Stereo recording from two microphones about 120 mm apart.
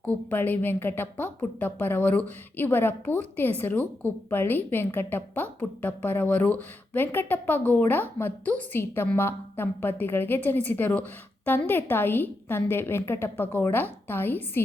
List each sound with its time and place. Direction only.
0.3 s a woman's voice: 15° left (ahead or behind)